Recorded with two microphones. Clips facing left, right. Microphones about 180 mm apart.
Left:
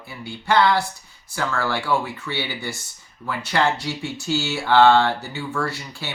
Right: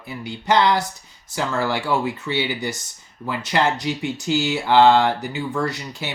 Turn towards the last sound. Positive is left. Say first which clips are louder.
# right 2 dB
turn(degrees=-20)  # may be behind; listen again after turning